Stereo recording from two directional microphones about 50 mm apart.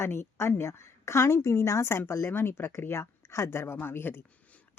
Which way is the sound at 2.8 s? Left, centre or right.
Left.